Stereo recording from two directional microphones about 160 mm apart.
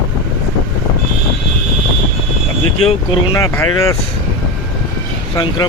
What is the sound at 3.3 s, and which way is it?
Speech, 20° left (ahead or behind).